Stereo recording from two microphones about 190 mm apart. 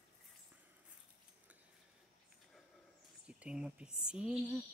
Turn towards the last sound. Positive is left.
turn(degrees=-5)  # may be behind; listen again after turning